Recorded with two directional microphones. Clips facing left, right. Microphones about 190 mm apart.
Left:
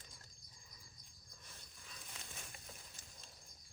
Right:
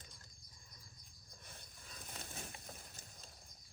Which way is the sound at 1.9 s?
50° right (ahead or behind).